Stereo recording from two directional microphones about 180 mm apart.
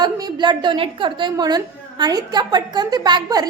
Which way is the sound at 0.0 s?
25° right (ahead or behind).